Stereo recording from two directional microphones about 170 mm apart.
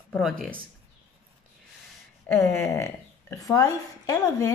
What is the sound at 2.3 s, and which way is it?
A woman's voice, 15° left (ahead or behind).